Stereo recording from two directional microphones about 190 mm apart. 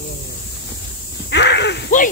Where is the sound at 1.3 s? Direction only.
65° left (ahead or behind).